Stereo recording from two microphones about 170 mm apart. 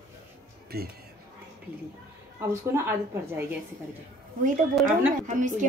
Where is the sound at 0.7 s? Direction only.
65° right (ahead or behind).